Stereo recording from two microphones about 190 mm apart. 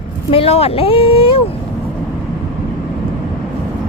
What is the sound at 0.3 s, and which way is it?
Speech, 30° left (ahead or behind).